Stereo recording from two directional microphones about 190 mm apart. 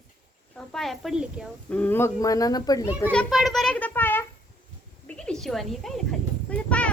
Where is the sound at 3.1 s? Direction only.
Centre (ahead or behind).